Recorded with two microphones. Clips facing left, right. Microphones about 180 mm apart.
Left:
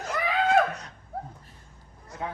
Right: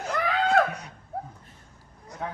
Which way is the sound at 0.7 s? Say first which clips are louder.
Right 1 dB; 10° right (ahead or behind).